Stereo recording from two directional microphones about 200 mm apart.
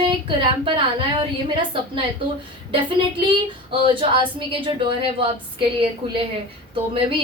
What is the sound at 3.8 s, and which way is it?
Speech, 25° right (ahead or behind).